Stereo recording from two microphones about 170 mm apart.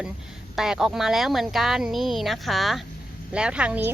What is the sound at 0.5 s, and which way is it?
Speech, centre (ahead or behind).